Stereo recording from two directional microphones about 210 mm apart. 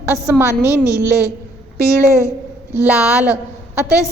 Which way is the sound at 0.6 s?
15° left (ahead or behind).